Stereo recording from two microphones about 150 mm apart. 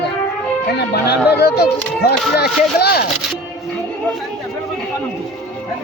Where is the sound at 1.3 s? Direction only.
90° left.